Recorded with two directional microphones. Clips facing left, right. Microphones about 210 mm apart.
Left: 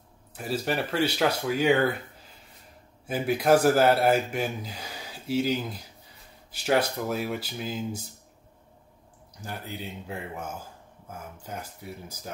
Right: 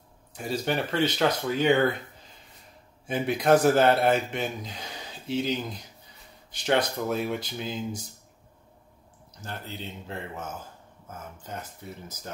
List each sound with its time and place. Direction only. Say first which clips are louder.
0.3 s speech: even; 5° left (ahead or behind)
9.4 s speech: left 1 dB; 10° left (ahead or behind)